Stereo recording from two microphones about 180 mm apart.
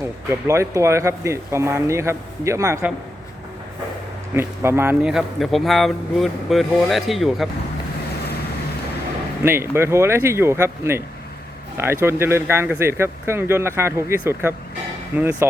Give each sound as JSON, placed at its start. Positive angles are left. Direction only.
{"t": 0.3, "sound": "speech", "side_deg": -15}
{"t": 4.4, "sound": "speech", "side_deg": -10}
{"t": 9.4, "sound": "speech", "side_deg": -15}